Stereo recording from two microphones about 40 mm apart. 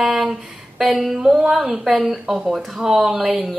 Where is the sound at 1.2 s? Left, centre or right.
Centre.